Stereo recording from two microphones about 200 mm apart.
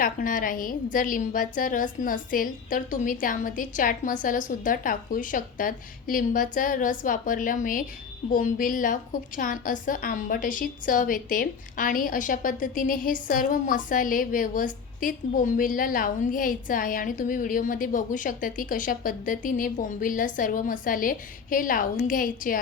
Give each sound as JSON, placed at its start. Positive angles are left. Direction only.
{"t": 0.0, "sound": "a woman's voice", "side_deg": 45}